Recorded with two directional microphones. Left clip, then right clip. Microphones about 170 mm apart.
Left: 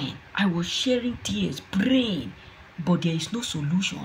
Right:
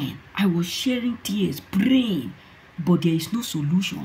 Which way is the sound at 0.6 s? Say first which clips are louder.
Even; 60° right (ahead or behind).